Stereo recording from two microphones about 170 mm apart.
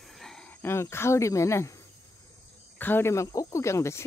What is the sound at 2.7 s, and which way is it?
Speech, 10° left (ahead or behind).